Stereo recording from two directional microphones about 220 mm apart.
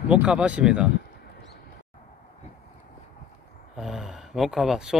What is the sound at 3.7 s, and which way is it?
Snoring, centre (ahead or behind).